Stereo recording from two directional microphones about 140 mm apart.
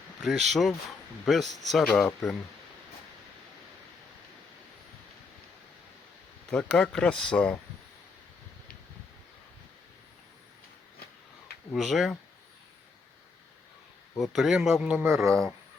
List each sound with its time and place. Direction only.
0.2 s speech: centre (ahead or behind)
6.5 s speech: 5° left (ahead or behind)
11.7 s speech: centre (ahead or behind)
14.2 s speech: centre (ahead or behind)
15.0 s speech: 20° right (ahead or behind)